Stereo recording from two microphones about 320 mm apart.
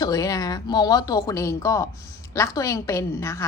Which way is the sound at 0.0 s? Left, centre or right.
Centre.